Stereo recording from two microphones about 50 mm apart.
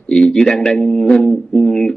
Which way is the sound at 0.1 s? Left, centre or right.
Centre.